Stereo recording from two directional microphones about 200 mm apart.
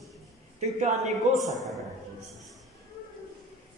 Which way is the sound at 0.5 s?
35° right (ahead or behind).